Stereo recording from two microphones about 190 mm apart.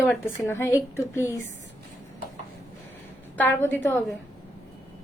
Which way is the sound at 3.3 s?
10° left (ahead or behind).